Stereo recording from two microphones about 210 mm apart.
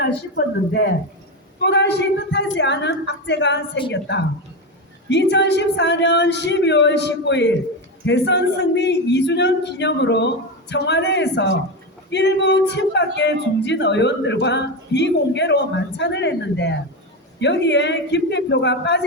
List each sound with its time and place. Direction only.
0.0 s speech: 50° left (ahead or behind)